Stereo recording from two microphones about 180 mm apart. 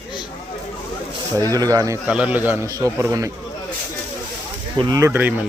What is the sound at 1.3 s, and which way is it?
Speech, 15° left (ahead or behind).